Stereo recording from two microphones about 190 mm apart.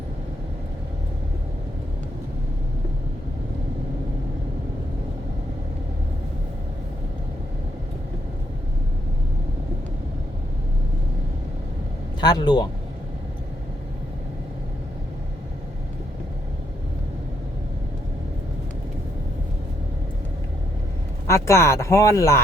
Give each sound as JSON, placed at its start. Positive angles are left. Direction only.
{"t": 12.2, "sound": "speech", "side_deg": 20}
{"t": 21.2, "sound": "speech", "side_deg": 15}